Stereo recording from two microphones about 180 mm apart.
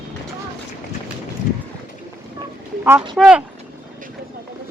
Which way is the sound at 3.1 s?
5° right (ahead or behind).